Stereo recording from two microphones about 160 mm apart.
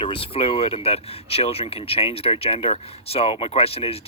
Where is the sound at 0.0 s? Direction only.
35° left (ahead or behind).